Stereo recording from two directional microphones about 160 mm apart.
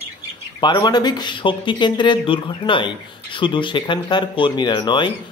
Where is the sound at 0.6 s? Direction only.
25° left (ahead or behind).